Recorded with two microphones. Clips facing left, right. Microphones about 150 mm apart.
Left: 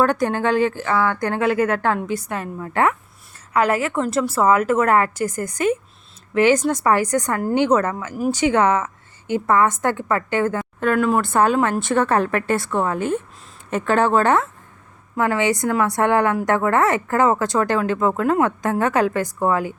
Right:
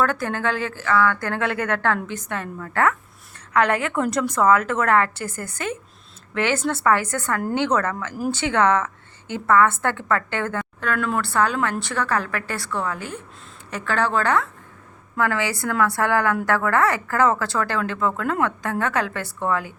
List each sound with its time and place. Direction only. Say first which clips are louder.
0.0 s speech: left 4 dB; 20° left (ahead or behind)
3.5 s speech: left 1 dB; 5° left (ahead or behind)
10.9 s a woman's voice: left 5 dB; 35° left (ahead or behind)
11.4 s a woman's voice: left 6 dB; 20° left (ahead or behind)